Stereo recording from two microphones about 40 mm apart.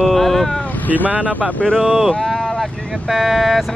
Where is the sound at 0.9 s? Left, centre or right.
Right.